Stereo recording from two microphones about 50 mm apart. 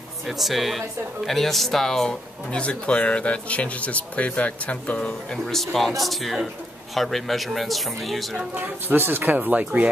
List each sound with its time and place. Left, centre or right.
0.3 s speech: centre
2.6 s speech: left
5.3 s speech: centre
8.5 s speech: right